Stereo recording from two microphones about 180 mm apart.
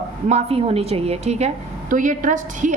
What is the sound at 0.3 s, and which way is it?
A woman's voice, 35° right (ahead or behind).